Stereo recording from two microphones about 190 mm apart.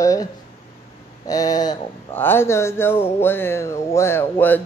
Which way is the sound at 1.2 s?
20° left (ahead or behind).